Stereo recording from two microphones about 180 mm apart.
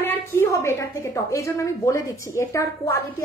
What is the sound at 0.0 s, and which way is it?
A woman's voice, 10° left (ahead or behind).